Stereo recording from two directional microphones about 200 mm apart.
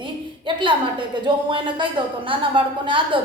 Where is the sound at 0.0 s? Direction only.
25° right (ahead or behind).